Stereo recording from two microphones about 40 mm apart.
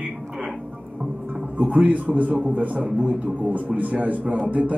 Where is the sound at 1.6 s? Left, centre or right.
Right.